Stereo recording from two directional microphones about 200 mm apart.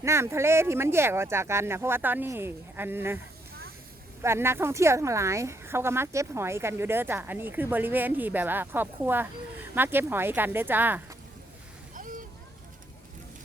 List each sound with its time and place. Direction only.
0.0 s a woman's voice: 15° right (ahead or behind)
4.2 s a woman's voice: 10° right (ahead or behind)
11.9 s a sound: 40° right (ahead or behind)